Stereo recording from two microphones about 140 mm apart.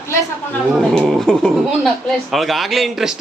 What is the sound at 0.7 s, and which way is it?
A man's voice, centre (ahead or behind).